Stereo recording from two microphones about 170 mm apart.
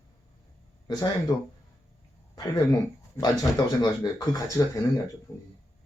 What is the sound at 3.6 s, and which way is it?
Speech, 25° left (ahead or behind).